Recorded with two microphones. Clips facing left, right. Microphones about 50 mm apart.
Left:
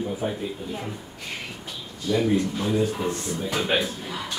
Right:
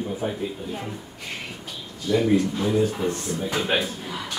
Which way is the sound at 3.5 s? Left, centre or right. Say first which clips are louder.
Left 1 dB; centre.